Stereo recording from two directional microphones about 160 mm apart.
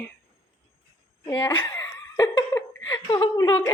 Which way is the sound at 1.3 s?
15° left (ahead or behind).